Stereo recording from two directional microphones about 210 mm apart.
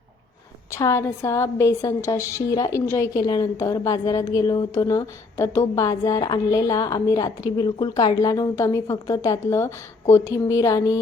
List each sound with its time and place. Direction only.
0.7 s a woman's voice: 15° left (ahead or behind)